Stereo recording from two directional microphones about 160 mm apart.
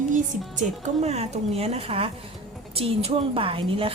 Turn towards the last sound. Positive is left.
turn(degrees=-35)  # may be behind; listen again after turning